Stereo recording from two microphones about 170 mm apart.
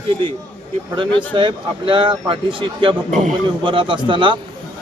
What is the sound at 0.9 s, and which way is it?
Speech, 30° right (ahead or behind).